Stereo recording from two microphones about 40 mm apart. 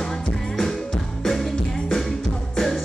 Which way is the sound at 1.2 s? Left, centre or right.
Centre.